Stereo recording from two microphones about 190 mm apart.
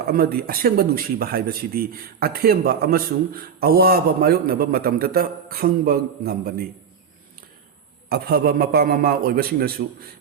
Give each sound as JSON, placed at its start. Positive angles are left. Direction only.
{"t": 0.1, "sound": "a man's voice", "side_deg": -50}
{"t": 8.1, "sound": "a man's voice", "side_deg": -55}